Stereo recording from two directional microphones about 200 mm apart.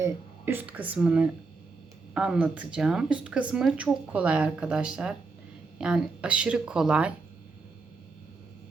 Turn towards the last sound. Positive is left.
turn(degrees=-5)  # may be behind; listen again after turning